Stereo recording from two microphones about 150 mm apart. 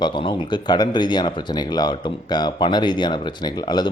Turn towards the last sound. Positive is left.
turn(degrees=30)  # may be behind; listen again after turning